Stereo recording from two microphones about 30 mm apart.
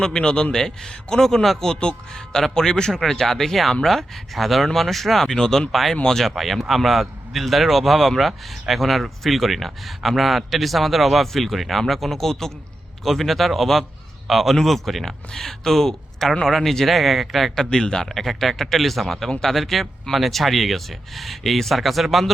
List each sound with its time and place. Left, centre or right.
0.0 s a man's voice: left
1.1 s speech: centre
1.7 s speech: left
2.6 s a man's voice: left
2.9 s speech: centre
6.3 s speech: centre
13.1 s speech: centre
16.5 s speech: centre
17.5 s a man's voice: centre
18.1 s speech: centre